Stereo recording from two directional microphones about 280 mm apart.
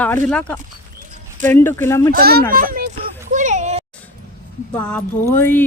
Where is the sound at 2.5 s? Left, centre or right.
Right.